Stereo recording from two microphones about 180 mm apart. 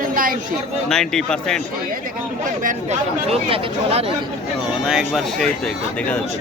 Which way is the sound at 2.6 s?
35° right (ahead or behind).